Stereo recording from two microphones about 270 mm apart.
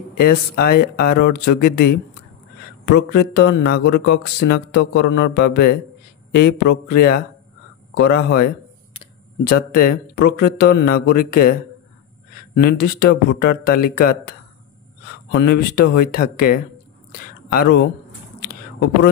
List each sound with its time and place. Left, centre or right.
0.2 s speech: left
12.5 s speech: left
15.3 s speech: left